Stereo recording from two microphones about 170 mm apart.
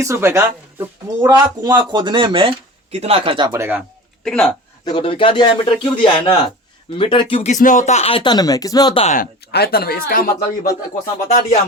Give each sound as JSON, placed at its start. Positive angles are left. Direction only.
{"t": 0.0, "sound": "speech", "side_deg": -15}
{"t": 4.2, "sound": "speech", "side_deg": 5}
{"t": 4.9, "sound": "speech", "side_deg": 30}
{"t": 7.5, "sound": "speech", "side_deg": 50}
{"t": 9.0, "sound": "speech", "side_deg": 45}
{"t": 9.2, "sound": "speech", "side_deg": 65}